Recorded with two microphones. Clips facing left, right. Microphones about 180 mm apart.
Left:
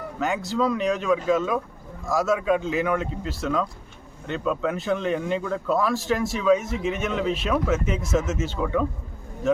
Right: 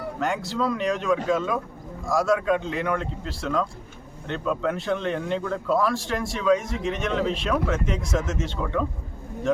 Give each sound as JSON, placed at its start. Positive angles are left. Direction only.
{"t": 0.2, "sound": "speech", "side_deg": 0}